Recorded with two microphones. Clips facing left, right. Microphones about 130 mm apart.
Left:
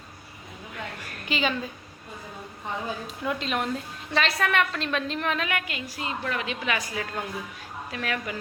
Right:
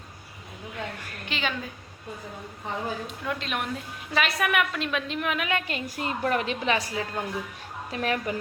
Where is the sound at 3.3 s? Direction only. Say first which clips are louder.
Left 3 dB; centre (ahead or behind).